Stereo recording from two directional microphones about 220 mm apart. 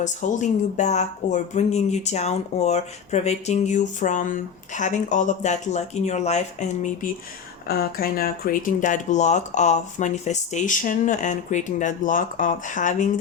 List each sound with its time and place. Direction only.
0.0 s speech: 35° left (ahead or behind)